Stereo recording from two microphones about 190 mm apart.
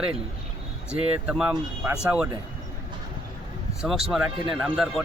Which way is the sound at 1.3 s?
5° right (ahead or behind).